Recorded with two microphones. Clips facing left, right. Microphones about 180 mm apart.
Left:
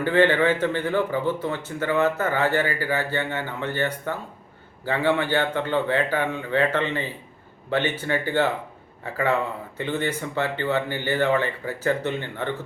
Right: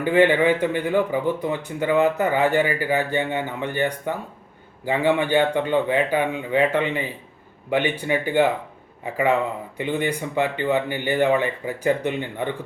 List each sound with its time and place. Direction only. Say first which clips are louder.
0.0 s speech: right 2 dB; 15° right (ahead or behind)